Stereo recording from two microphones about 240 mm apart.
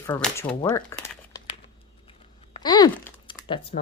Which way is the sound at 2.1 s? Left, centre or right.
Centre.